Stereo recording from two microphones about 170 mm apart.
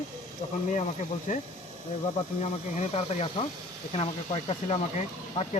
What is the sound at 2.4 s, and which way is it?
Speech, 40° left (ahead or behind).